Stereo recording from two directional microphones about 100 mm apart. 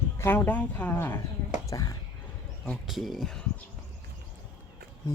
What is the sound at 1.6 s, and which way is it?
Speech, 35° left (ahead or behind).